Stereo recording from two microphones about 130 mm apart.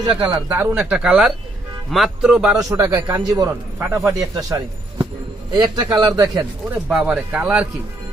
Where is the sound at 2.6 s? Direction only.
25° right (ahead or behind).